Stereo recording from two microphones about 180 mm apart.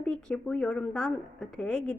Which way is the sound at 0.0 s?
5° left (ahead or behind).